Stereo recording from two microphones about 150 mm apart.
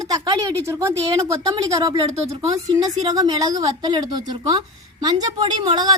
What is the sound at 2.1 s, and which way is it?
Speech, 45° right (ahead or behind).